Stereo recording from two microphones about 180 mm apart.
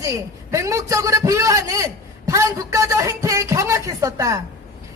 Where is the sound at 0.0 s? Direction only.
15° right (ahead or behind).